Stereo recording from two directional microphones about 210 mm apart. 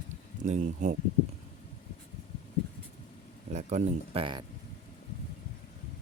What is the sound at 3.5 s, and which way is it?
Speech, 35° right (ahead or behind).